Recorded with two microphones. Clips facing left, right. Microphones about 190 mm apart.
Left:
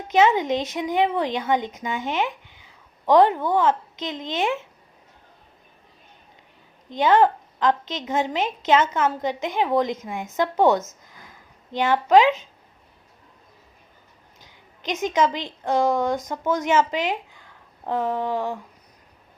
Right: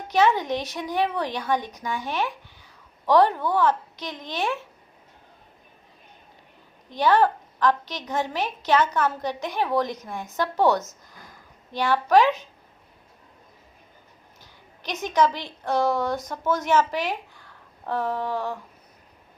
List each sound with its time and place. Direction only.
0.1 s a woman's voice: 20° left (ahead or behind)
6.9 s a woman's voice: 20° left (ahead or behind)
14.4 s a woman's voice: 20° left (ahead or behind)